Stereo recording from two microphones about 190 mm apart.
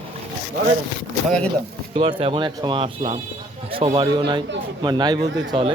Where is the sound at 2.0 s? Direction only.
30° right (ahead or behind).